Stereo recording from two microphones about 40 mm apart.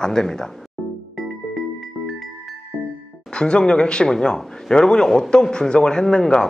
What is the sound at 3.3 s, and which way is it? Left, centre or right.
A man's voice, left.